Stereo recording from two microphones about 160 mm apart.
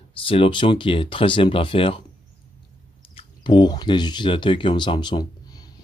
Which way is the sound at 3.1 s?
30° left (ahead or behind).